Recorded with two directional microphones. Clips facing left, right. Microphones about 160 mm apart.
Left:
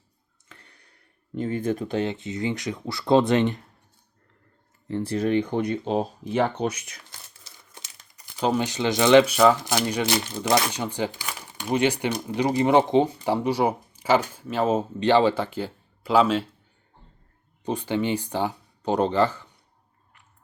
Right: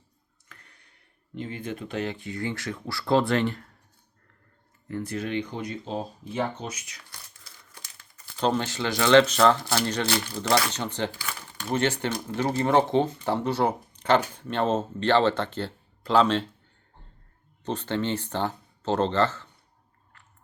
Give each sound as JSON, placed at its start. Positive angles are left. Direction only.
{"t": 0.4, "sound": "a sound", "side_deg": 30}
{"t": 1.4, "sound": "speech", "side_deg": 45}
{"t": 4.9, "sound": "speech", "side_deg": 30}
{"t": 7.1, "sound": "speech", "side_deg": 20}
{"t": 17.6, "sound": "speech", "side_deg": 10}